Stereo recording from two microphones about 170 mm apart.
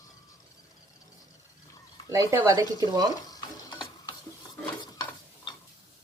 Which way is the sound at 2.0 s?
20° right (ahead or behind).